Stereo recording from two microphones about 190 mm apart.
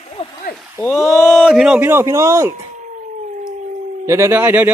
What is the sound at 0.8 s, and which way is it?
Speech, 10° left (ahead or behind).